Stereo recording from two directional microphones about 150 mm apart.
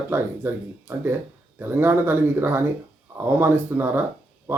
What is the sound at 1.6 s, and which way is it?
Speech, 15° right (ahead or behind).